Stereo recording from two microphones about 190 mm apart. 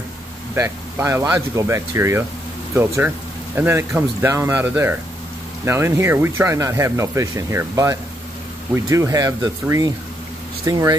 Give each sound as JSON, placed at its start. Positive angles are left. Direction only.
{"t": 0.6, "sound": "speech", "side_deg": -15}